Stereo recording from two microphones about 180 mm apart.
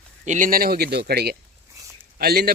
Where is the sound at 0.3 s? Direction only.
45° right (ahead or behind).